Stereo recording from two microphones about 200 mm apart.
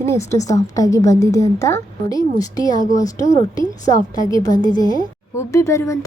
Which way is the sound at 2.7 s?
40° left (ahead or behind).